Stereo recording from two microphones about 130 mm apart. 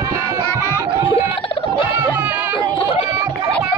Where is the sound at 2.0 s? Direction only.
15° right (ahead or behind).